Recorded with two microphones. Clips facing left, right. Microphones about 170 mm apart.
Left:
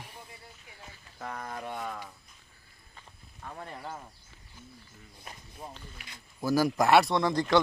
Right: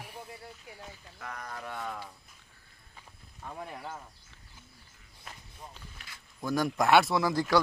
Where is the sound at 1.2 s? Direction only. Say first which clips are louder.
Left 3 dB; 30° left (ahead or behind).